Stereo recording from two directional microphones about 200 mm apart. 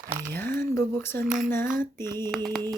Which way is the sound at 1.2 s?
Centre (ahead or behind).